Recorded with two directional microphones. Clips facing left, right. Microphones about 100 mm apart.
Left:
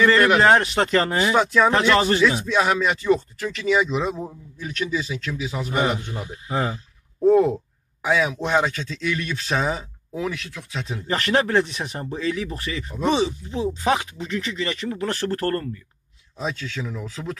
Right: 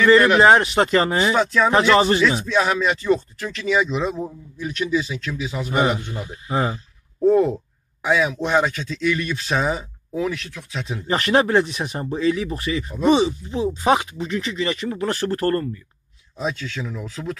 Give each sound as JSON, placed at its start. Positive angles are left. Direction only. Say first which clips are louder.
{"t": 0.4, "sound": "speech", "louder": "right 3 dB", "side_deg": -10}
{"t": 1.3, "sound": "speech", "louder": "left 4 dB", "side_deg": 10}
{"t": 1.7, "sound": "speech", "louder": "right 3 dB", "side_deg": -10}
{"t": 2.4, "sound": "speech", "louder": "right 1 dB", "side_deg": 10}
{"t": 4.6, "sound": "speech", "louder": "right 4 dB", "side_deg": -5}
{"t": 7.2, "sound": "a man's voice", "louder": "even", "side_deg": 5}
{"t": 11.1, "sound": "speech", "louder": "right 3 dB", "side_deg": -15}
{"t": 13.5, "sound": "speech", "louder": "right 3 dB", "side_deg": -20}